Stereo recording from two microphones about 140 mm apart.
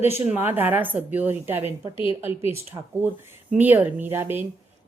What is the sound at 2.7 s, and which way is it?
A woman's voice, 15° right (ahead or behind).